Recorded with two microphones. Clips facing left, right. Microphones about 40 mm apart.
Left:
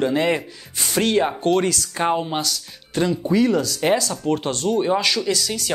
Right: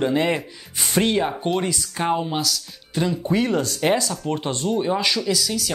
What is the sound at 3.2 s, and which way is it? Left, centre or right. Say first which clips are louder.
Speech: left 3 dB; right.